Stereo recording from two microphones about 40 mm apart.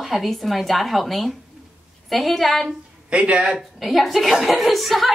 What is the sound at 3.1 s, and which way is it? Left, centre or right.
Speech, right.